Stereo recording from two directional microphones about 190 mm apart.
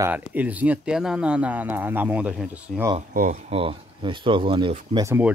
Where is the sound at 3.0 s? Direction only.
40° right (ahead or behind).